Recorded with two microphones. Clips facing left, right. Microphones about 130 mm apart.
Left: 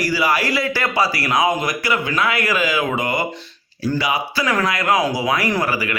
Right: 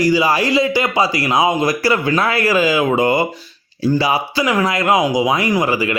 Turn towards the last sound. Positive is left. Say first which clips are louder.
# right 4 dB
turn(degrees=-25)  # may be behind; listen again after turning